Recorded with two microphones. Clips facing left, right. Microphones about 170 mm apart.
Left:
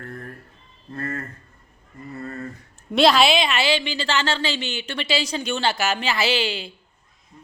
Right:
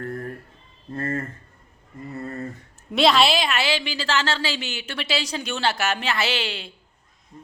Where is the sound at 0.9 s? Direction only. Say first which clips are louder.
Right 3 dB; 25° right (ahead or behind).